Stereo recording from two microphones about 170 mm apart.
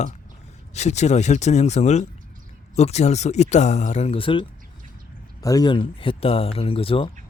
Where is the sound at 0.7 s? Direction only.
40° left (ahead or behind).